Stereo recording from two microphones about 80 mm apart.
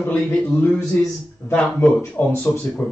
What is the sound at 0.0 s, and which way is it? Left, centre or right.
Speech, left.